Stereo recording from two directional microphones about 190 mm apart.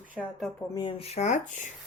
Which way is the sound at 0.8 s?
25° left (ahead or behind).